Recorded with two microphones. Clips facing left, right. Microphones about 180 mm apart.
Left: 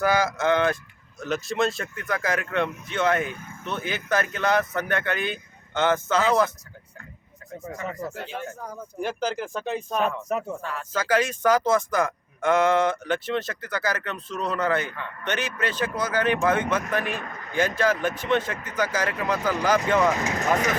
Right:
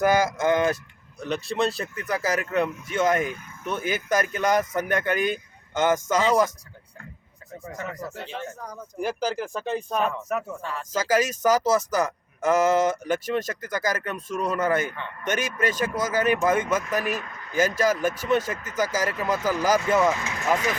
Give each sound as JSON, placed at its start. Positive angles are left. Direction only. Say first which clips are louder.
{"t": 0.0, "sound": "speech", "louder": "right 2 dB", "side_deg": -15}
{"t": 1.2, "sound": "speech", "louder": "even", "side_deg": 0}
{"t": 8.4, "sound": "speech", "louder": "left 1 dB", "side_deg": 0}
{"t": 17.0, "sound": "speech", "louder": "right 2 dB", "side_deg": -40}
{"t": 17.7, "sound": "speech", "louder": "right 1 dB", "side_deg": -10}
{"t": 20.1, "sound": "speech", "louder": "left 2 dB", "side_deg": 40}